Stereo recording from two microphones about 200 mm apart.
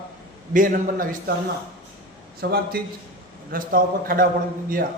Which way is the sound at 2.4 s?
50° right (ahead or behind).